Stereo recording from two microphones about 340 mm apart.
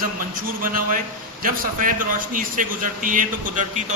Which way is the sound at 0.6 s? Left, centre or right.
Right.